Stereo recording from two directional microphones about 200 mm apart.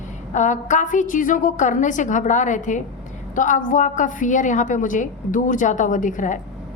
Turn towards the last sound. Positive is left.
turn(degrees=40)  # may be behind; listen again after turning